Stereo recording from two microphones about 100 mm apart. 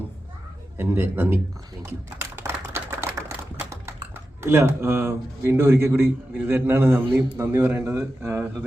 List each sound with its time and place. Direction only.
0.8 s a man's voice: 25° right (ahead or behind)
1.8 s typing: 25° right (ahead or behind)
4.4 s a man's voice: 25° right (ahead or behind)